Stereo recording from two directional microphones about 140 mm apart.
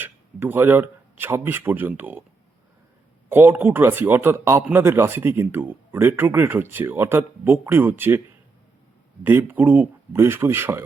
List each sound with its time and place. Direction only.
0.0 s speech: 15° right (ahead or behind)
3.2 s a man's voice: 15° right (ahead or behind)
9.2 s a man's voice: 15° right (ahead or behind)